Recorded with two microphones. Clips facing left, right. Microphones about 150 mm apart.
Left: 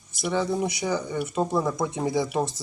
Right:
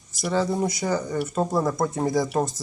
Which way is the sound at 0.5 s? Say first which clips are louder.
Right 2 dB; centre (ahead or behind).